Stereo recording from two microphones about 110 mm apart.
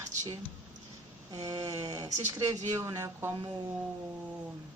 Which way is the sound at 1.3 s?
35° right (ahead or behind).